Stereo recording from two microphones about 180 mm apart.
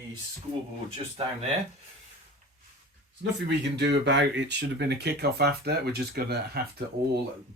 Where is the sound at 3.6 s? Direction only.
75° right (ahead or behind).